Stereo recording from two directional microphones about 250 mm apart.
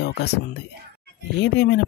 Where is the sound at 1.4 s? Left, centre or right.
Left.